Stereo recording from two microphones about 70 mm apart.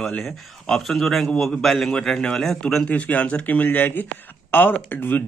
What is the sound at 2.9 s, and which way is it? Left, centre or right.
Speech, left.